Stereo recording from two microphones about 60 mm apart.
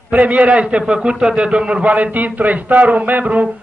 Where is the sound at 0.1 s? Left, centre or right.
Right.